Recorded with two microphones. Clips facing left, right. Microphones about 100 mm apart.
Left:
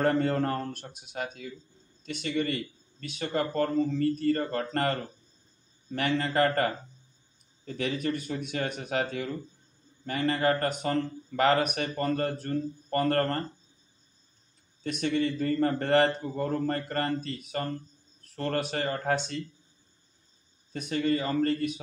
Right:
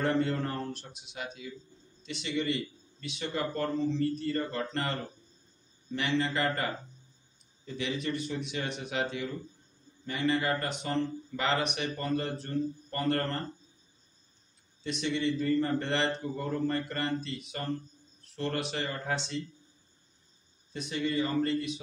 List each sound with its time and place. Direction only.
0.0 s speech: 50° left (ahead or behind)
14.8 s speech: 50° left (ahead or behind)
20.7 s speech: 50° left (ahead or behind)